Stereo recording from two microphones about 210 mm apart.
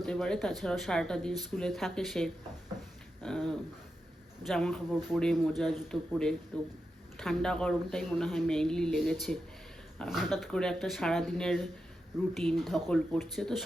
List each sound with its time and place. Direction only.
0.0 s speech: 5° left (ahead or behind)